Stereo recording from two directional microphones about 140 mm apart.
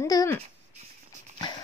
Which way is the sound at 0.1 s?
25° left (ahead or behind).